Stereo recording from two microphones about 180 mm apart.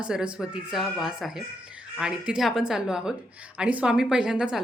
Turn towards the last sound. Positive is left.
turn(degrees=-5)  # may be behind; listen again after turning